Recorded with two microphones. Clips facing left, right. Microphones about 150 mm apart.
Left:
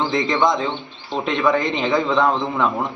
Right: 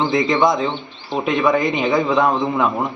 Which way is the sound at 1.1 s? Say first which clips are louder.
Right 2 dB; 10° right (ahead or behind).